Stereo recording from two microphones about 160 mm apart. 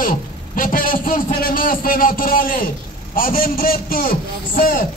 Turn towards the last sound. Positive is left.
turn(degrees=60)  # may be behind; listen again after turning